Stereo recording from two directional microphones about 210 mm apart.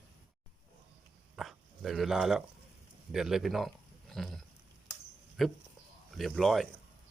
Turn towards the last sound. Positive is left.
turn(degrees=0)  # may be behind; listen again after turning